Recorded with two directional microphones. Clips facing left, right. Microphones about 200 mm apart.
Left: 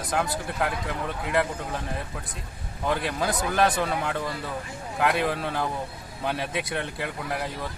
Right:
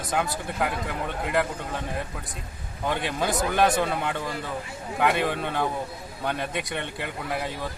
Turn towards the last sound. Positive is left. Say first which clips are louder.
# right 1 dB
turn(degrees=0)  # may be behind; listen again after turning